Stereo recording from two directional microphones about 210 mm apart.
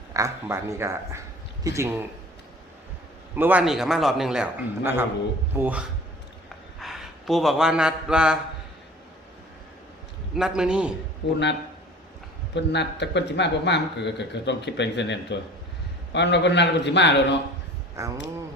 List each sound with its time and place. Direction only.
0.1 s speech: 15° right (ahead or behind)
3.3 s a man's voice: 10° right (ahead or behind)
10.3 s a man's voice: 5° right (ahead or behind)
11.2 s speech: 60° left (ahead or behind)
12.5 s speech: 55° left (ahead or behind)
18.0 s speech: 15° right (ahead or behind)